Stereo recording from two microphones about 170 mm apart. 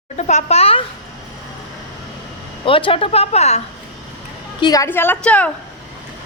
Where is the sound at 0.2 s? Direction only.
40° left (ahead or behind).